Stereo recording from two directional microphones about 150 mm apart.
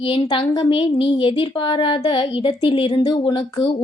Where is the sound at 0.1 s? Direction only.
35° left (ahead or behind).